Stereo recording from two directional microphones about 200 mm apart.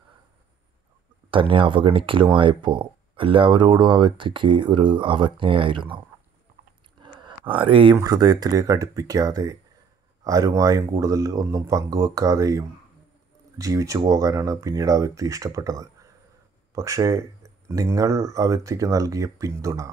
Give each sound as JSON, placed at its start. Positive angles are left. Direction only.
{"t": 1.3, "sound": "speech", "side_deg": -25}
{"t": 7.0, "sound": "a sound", "side_deg": -25}
{"t": 7.9, "sound": "speech", "side_deg": -20}